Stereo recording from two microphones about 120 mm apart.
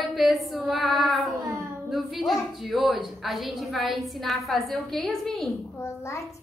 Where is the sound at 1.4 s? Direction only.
25° right (ahead or behind).